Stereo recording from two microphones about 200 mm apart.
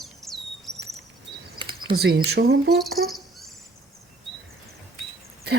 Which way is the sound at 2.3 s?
55° right (ahead or behind).